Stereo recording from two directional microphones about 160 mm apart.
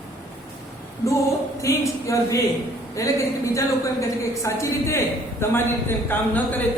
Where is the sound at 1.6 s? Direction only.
20° left (ahead or behind).